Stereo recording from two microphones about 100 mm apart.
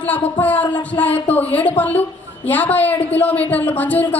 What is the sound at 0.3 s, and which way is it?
Speech, 15° left (ahead or behind).